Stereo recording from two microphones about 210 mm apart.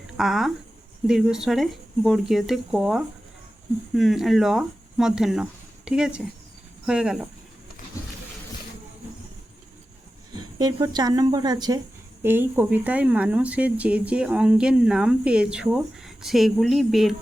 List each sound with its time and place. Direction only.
0.2 s speech: centre (ahead or behind)
10.6 s speech: 20° right (ahead or behind); by 17.2 s centre (ahead or behind)